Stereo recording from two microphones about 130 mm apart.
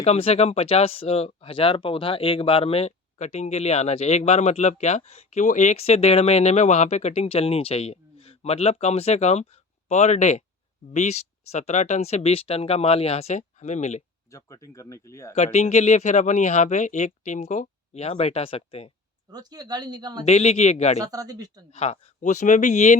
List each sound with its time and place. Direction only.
0.0 s speech: 50° left (ahead or behind)
14.3 s speech: 25° left (ahead or behind)
15.5 s speech: 60° left (ahead or behind)
19.3 s speech: 30° right (ahead or behind)
20.2 s speech: 55° left (ahead or behind)
21.0 s speech: 30° right (ahead or behind)
21.7 s speech: 55° left (ahead or behind)